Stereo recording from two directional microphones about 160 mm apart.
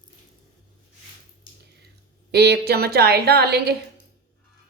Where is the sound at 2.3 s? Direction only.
90° right.